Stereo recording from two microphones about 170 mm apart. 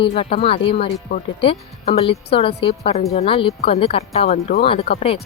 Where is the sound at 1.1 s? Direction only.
75° left (ahead or behind).